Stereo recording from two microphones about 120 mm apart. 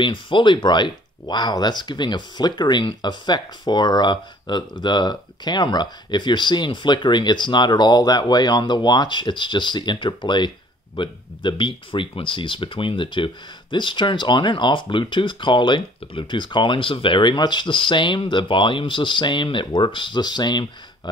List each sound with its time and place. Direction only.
0.0 s speech: 40° left (ahead or behind)